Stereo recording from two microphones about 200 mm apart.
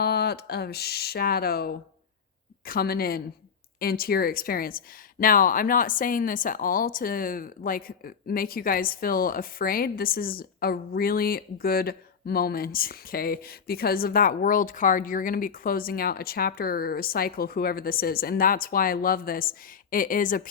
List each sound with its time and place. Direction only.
0.0 s a woman's voice: 55° left (ahead or behind)